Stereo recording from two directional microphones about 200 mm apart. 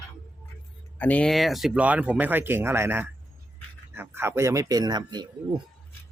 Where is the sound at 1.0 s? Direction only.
5° left (ahead or behind); by 5.2 s 20° right (ahead or behind).